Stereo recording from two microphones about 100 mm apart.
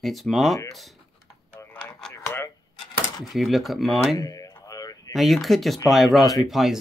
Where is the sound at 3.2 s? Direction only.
Centre (ahead or behind).